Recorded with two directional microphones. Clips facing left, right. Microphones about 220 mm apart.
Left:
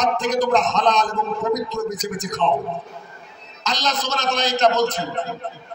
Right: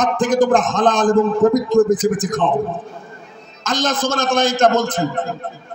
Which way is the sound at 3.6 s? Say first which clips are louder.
Right 6 dB; 50° right (ahead or behind).